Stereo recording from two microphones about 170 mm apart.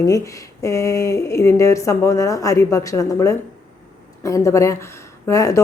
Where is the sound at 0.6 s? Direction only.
20° left (ahead or behind).